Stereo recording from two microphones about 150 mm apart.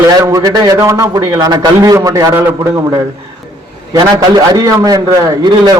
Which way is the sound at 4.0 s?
25° right (ahead or behind).